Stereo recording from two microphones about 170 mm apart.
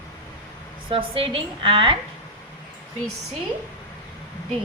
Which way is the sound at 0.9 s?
30° right (ahead or behind).